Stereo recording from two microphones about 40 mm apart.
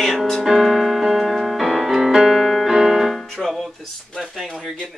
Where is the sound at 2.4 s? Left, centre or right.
Centre.